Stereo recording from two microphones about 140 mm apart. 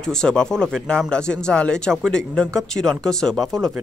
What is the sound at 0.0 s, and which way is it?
Speech, 5° left (ahead or behind).